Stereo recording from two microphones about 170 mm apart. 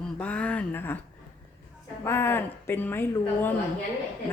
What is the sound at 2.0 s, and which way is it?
A woman's voice, 15° left (ahead or behind).